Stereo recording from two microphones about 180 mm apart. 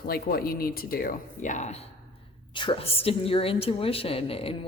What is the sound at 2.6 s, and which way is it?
A woman's voice, 30° left (ahead or behind).